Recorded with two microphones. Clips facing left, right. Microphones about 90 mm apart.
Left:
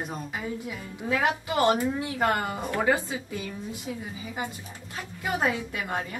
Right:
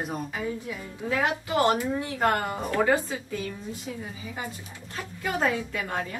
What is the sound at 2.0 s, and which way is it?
Speech, 10° left (ahead or behind).